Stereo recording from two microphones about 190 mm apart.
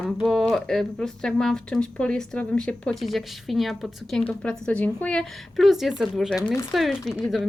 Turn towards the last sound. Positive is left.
turn(degrees=0)  # may be behind; listen again after turning